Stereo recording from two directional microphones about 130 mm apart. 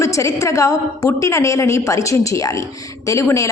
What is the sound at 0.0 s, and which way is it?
A woman's voice, 25° left (ahead or behind).